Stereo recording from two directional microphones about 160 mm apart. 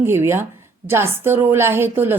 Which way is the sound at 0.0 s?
15° right (ahead or behind).